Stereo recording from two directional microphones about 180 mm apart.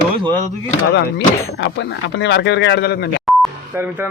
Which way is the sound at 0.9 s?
70° left (ahead or behind).